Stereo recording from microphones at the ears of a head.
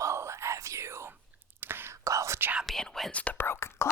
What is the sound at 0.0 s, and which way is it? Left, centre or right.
Whispering, right.